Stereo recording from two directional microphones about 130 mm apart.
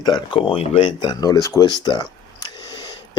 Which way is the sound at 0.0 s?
35° left (ahead or behind).